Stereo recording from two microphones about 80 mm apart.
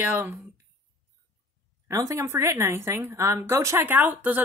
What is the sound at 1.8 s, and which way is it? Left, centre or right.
A woman's voice, right.